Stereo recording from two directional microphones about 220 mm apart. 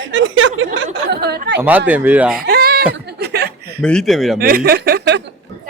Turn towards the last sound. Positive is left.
turn(degrees=-50)  # may be behind; listen again after turning